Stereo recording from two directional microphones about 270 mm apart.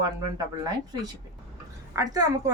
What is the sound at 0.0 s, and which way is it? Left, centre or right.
A woman's voice, centre.